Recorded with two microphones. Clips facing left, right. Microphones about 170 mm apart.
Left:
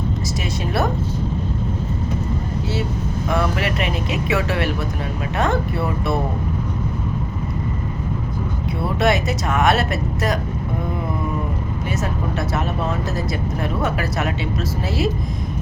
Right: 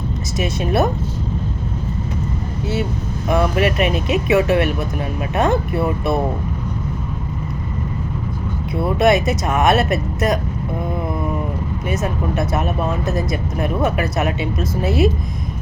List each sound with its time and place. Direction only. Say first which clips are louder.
0.3 s speech: right 6 dB; 20° right (ahead or behind)
3.2 s speech: right 5 dB; 20° right (ahead or behind)
9.0 s speech: right 4 dB; 20° right (ahead or behind)
13.1 s speech: right 2 dB; 20° right (ahead or behind)